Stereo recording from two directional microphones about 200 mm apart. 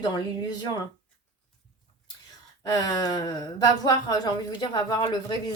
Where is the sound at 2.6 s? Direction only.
20° left (ahead or behind).